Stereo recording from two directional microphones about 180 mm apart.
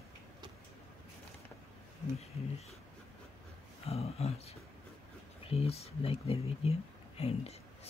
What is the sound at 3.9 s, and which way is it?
Speech, 35° left (ahead or behind).